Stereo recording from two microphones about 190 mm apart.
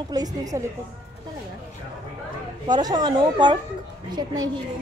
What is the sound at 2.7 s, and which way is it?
Speech, 20° right (ahead or behind).